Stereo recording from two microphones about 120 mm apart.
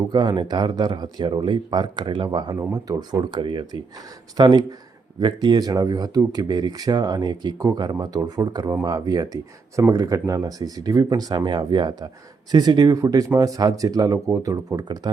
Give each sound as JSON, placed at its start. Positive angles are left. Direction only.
{"t": 0.1, "sound": "speech", "side_deg": -40}